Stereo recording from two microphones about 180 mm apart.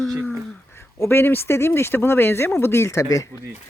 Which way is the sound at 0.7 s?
15° left (ahead or behind).